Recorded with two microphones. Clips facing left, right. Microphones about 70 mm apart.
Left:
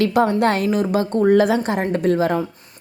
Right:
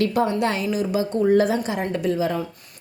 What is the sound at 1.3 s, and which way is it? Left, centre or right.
Speech, left.